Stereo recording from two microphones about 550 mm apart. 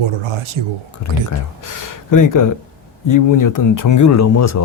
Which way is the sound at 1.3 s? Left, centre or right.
Left.